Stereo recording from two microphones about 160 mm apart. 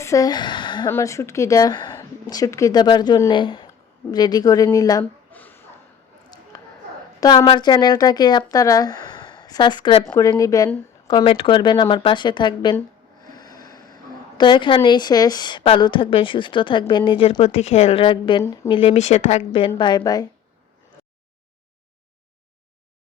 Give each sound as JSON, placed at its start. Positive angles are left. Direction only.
{"t": 0.0, "sound": "speech", "side_deg": 20}
{"t": 0.9, "sound": "speech", "side_deg": 15}
{"t": 5.3, "sound": "a sound", "side_deg": 10}
{"t": 6.3, "sound": "a sound", "side_deg": 25}
{"t": 7.2, "sound": "a woman's voice", "side_deg": 25}
{"t": 11.1, "sound": "speech", "side_deg": 35}
{"t": 13.2, "sound": "snort", "side_deg": 25}
{"t": 14.3, "sound": "a woman's voice", "side_deg": 30}
{"t": 18.4, "sound": "speech", "side_deg": 20}
{"t": 18.7, "sound": "speech", "side_deg": 40}
{"t": 19.5, "sound": "speech", "side_deg": 30}